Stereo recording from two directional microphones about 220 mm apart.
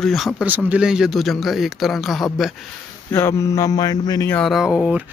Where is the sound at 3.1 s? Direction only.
10° left (ahead or behind).